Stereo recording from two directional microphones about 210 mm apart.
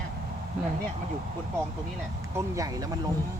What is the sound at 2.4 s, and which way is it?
Speech, 15° right (ahead or behind).